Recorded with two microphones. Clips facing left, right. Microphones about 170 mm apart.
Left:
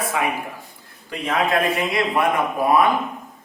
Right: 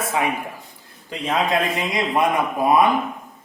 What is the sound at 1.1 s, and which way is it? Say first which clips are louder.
A man's voice: even; 20° right (ahead or behind).